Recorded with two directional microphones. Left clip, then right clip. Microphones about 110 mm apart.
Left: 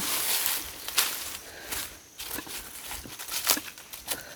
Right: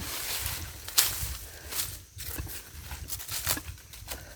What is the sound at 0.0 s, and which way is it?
Boat, 30° left (ahead or behind).